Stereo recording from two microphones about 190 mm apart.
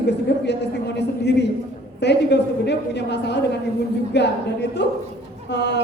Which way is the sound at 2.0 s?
65° left (ahead or behind).